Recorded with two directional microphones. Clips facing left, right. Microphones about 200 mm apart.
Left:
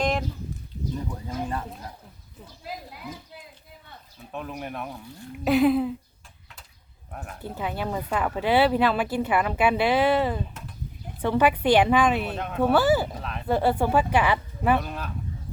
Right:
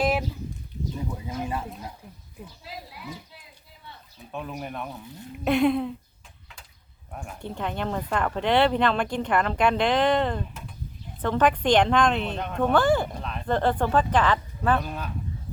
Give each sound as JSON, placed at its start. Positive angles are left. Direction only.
{"t": 0.0, "sound": "a sound", "side_deg": -5}
{"t": 0.9, "sound": "speech", "side_deg": -10}
{"t": 2.6, "sound": "a sound", "side_deg": 50}
{"t": 4.3, "sound": "speech", "side_deg": 0}
{"t": 7.1, "sound": "speech", "side_deg": 0}
{"t": 14.8, "sound": "speech", "side_deg": 0}